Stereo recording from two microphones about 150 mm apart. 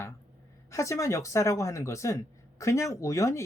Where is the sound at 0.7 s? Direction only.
20° left (ahead or behind).